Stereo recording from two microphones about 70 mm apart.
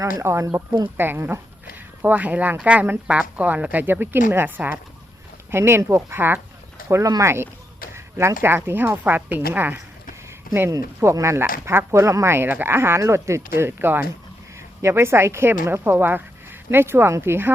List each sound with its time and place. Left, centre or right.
0.0 s speech: right
0.9 s speech: right
5.5 s speech: right
7.0 s speech: right
11.0 s speech: right